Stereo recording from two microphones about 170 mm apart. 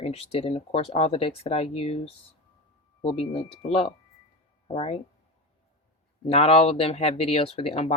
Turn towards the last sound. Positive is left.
turn(degrees=40)  # may be behind; listen again after turning